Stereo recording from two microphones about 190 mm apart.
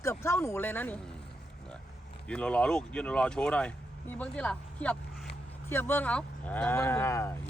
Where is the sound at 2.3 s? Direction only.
5° left (ahead or behind).